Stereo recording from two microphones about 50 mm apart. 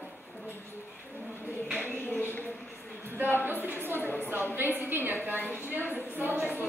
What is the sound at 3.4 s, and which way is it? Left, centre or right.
A woman's voice, right.